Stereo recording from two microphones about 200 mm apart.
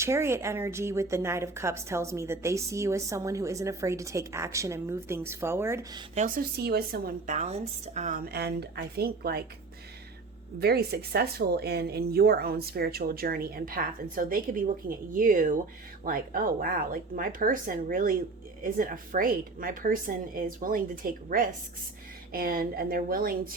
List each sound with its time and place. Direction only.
0.0 s speech: 15° right (ahead or behind)
6.1 s speech: 40° right (ahead or behind)
10.6 s speech: 55° right (ahead or behind)